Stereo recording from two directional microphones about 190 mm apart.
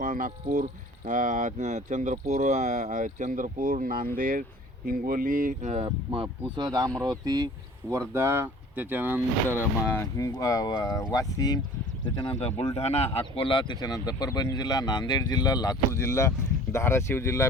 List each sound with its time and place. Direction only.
0.0 s speech: 45° right (ahead or behind)
6.1 s speech: 25° right (ahead or behind); by 9.6 s 10° right (ahead or behind)
9.8 s speech: 10° left (ahead or behind)
12.4 s speech: 30° left (ahead or behind); by 17.5 s 15° left (ahead or behind)